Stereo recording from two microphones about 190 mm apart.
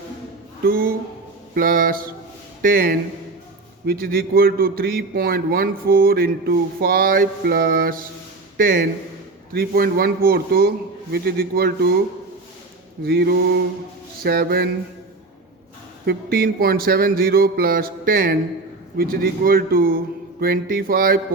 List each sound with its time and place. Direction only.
0.6 s a man's voice: 50° right (ahead or behind)
13.1 s mantra: 55° right (ahead or behind)
14.3 s a man's voice: 55° right (ahead or behind)
16.0 s a man's voice: 50° right (ahead or behind)